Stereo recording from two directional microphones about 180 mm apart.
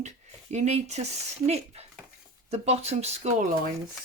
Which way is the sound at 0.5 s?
40° right (ahead or behind).